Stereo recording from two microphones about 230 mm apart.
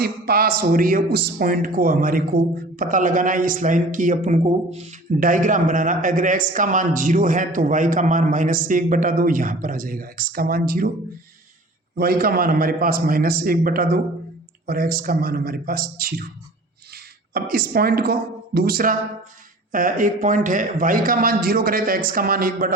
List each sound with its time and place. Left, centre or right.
0.0 s a man's voice: right
11.9 s a man's voice: right